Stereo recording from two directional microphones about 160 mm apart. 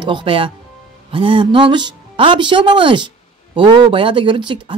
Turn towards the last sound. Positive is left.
turn(degrees=-30)  # may be behind; listen again after turning